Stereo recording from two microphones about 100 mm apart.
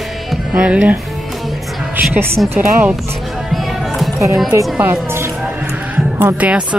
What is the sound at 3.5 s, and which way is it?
Music, centre (ahead or behind).